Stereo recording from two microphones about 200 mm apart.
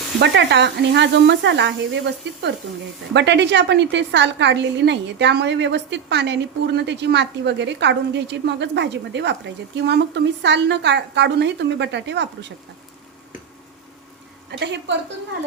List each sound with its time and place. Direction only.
0.2 s a woman's voice: 60° right (ahead or behind)
3.1 s a woman's voice: 60° right (ahead or behind)
14.6 s a woman's voice: 60° right (ahead or behind)